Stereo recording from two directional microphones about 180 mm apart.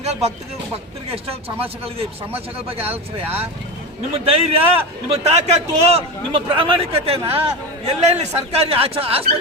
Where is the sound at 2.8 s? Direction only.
10° right (ahead or behind).